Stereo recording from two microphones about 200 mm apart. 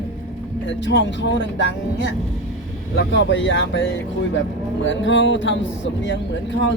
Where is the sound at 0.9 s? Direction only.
65° left (ahead or behind).